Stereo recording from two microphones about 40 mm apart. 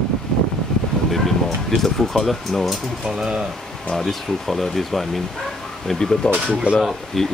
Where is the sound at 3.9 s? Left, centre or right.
Centre.